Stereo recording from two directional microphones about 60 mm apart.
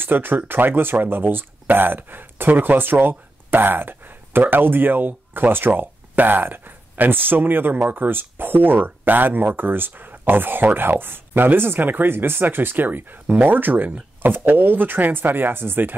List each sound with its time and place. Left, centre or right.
0.0 s speech: right